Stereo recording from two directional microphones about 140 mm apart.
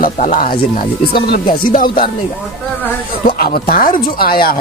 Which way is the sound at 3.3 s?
90° left.